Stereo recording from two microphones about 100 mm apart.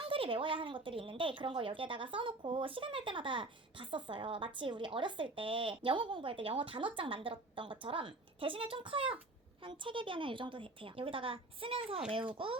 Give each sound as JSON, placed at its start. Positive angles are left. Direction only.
{"t": 0.0, "sound": "speech", "side_deg": -65}